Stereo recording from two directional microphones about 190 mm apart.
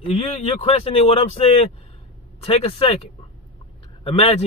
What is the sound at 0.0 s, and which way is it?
Speech, 30° left (ahead or behind).